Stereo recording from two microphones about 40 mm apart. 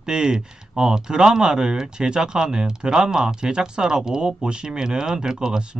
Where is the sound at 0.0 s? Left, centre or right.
Centre.